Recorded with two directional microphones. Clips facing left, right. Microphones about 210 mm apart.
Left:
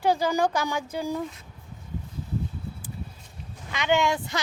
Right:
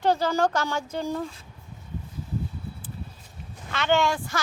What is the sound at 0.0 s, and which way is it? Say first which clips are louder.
A woman's voice: even; 10° left (ahead or behind).